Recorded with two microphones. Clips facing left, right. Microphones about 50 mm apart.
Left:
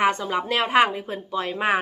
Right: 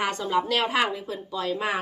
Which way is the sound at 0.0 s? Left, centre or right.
Left.